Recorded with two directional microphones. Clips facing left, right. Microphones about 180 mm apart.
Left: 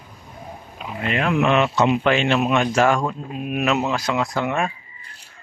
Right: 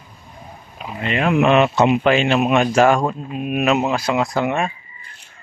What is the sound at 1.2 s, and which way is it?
Speech, 15° right (ahead or behind).